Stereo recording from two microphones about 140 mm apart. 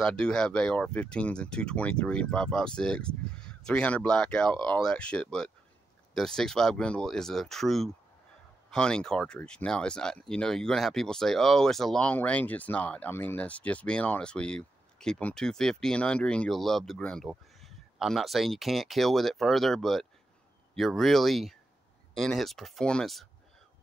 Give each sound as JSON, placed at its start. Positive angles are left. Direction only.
{"t": 0.0, "sound": "speech", "side_deg": 5}